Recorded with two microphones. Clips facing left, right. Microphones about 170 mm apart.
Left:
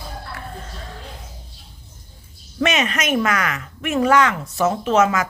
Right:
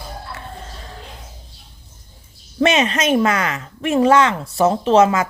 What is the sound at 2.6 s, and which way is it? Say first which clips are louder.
Speech: right 4 dB; 30° right (ahead or behind).